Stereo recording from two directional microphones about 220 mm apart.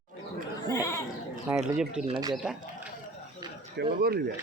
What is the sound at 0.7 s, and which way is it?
Goat, 15° left (ahead or behind).